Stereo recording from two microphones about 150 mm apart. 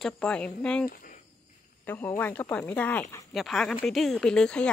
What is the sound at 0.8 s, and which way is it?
Speech, 70° left (ahead or behind).